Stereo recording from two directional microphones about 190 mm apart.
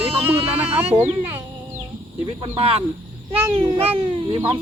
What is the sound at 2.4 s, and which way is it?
Speech, 30° right (ahead or behind).